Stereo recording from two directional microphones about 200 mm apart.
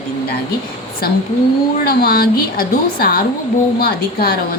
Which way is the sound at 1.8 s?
50° left (ahead or behind).